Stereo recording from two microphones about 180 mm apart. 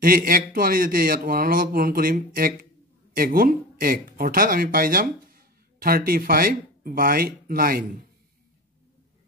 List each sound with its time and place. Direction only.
0.0 s speech: 55° right (ahead or behind)